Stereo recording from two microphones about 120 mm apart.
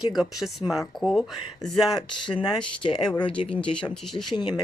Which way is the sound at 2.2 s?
40° left (ahead or behind).